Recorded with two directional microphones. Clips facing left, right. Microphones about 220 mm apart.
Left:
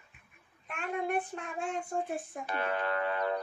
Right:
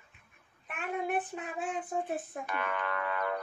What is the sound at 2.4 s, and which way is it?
Speech, 30° left (ahead or behind).